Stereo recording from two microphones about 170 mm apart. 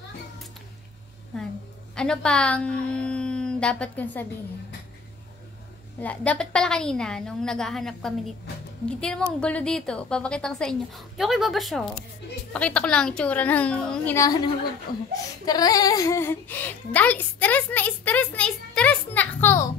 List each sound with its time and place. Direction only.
2.0 s a woman's voice: 5° left (ahead or behind)
5.9 s a woman's voice: 10° left (ahead or behind)
14.9 s speech: 60° left (ahead or behind)
15.4 s speech: 20° left (ahead or behind)